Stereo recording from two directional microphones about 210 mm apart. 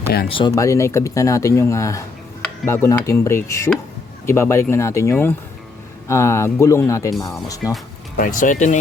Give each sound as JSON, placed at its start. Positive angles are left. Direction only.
{"t": 0.3, "sound": "speech", "side_deg": 25}
{"t": 8.2, "sound": "speech", "side_deg": 40}